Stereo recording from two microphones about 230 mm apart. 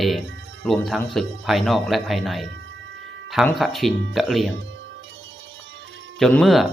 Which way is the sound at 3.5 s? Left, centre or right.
Centre.